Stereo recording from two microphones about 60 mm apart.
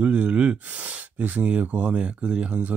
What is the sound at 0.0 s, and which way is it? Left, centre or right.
Speech, right.